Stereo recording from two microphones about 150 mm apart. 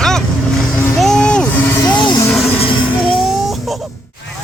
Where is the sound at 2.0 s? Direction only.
30° left (ahead or behind).